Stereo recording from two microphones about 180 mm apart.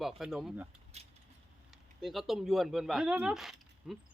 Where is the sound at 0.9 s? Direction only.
35° right (ahead or behind).